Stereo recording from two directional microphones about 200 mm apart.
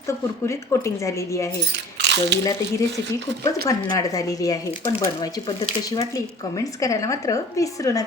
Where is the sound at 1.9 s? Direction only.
60° right (ahead or behind).